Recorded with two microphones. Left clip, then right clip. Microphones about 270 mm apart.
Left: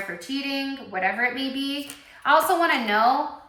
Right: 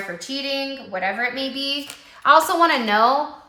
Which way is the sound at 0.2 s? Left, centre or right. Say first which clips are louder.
Right 5 dB; centre.